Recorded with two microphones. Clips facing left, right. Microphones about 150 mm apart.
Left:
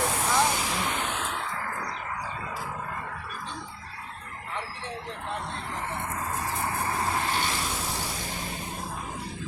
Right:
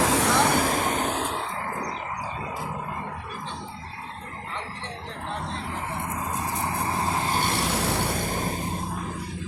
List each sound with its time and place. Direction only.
0.0 s vehicle: 85° right
0.5 s vehicle: 50° right (ahead or behind); by 1.9 s 25° right (ahead or behind)
6.1 s vehicle: 15° right (ahead or behind)
7.4 s a sound: 65° right (ahead or behind)